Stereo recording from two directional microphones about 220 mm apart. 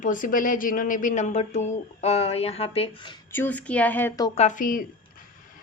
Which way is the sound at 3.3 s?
10° left (ahead or behind).